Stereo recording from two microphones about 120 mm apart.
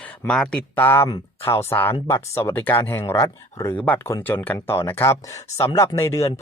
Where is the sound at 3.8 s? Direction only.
15° left (ahead or behind).